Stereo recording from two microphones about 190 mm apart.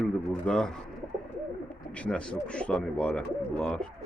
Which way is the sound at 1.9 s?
5° left (ahead or behind).